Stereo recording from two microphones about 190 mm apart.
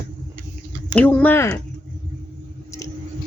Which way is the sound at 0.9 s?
10° left (ahead or behind).